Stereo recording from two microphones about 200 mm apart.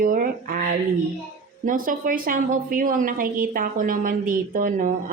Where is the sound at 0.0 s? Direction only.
45° right (ahead or behind).